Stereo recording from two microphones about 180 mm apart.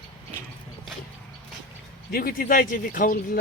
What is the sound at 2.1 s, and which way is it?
Speech, 55° left (ahead or behind).